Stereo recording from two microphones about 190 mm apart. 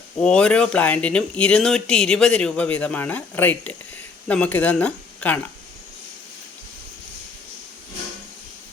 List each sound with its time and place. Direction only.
0.2 s speech: 5° left (ahead or behind)